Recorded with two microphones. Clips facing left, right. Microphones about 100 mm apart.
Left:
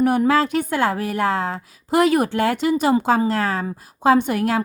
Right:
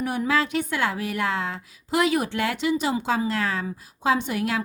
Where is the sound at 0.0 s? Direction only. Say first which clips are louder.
Left 7 dB; 50° left (ahead or behind).